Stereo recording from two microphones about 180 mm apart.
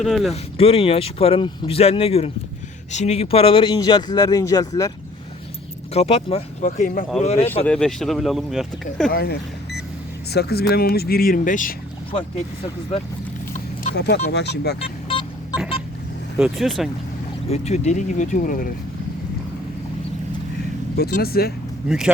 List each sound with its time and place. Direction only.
0.0 s speech: centre (ahead or behind)
0.5 s speech: 30° left (ahead or behind)
5.9 s speech: 35° left (ahead or behind)
6.7 s speech: 50° left (ahead or behind)
7.2 s speech: 35° left (ahead or behind)
7.6 s speech: 5° left (ahead or behind)
9.1 s vehicle: 60° left (ahead or behind)
10.3 s speech: 60° left (ahead or behind)
13.9 s speech: 65° left (ahead or behind)
16.4 s speech: centre (ahead or behind)
17.5 s speech: 35° left (ahead or behind)
20.9 s speech: 60° left (ahead or behind)
21.8 s speech: 5° right (ahead or behind)